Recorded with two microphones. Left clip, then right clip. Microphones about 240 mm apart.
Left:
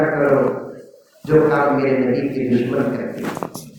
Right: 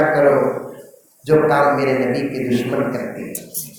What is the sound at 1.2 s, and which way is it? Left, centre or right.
A man's voice, right.